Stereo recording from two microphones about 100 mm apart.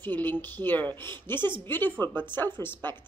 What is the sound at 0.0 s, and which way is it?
Speech, 20° left (ahead or behind).